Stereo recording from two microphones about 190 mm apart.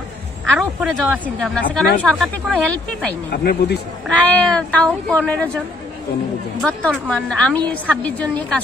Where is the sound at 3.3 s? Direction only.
55° left (ahead or behind).